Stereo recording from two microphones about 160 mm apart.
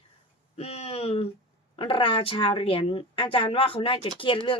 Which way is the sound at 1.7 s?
30° left (ahead or behind).